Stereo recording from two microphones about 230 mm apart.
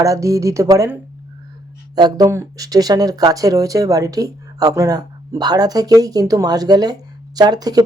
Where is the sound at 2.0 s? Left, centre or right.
Centre.